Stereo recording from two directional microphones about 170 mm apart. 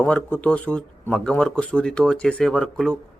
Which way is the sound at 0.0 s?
10° left (ahead or behind).